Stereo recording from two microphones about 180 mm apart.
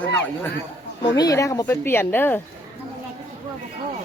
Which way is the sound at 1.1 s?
20° left (ahead or behind).